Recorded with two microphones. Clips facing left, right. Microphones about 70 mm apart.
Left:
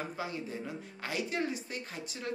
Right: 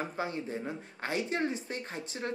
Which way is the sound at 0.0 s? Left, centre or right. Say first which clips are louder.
Right 3 dB; right.